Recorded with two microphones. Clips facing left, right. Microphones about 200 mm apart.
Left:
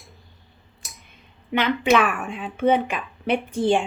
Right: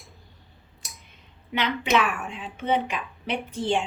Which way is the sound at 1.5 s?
50° left (ahead or behind).